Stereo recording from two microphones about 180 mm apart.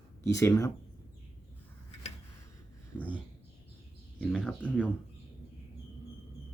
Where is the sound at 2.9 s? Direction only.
10° left (ahead or behind).